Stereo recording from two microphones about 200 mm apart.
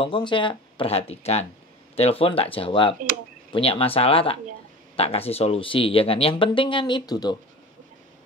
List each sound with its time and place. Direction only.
0.0 s speech: 25° left (ahead or behind)